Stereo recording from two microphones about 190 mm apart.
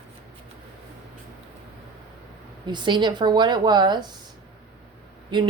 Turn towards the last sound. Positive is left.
turn(degrees=-25)  # may be behind; listen again after turning